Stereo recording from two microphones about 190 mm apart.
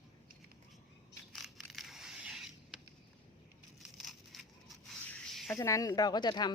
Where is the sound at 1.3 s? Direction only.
Centre (ahead or behind).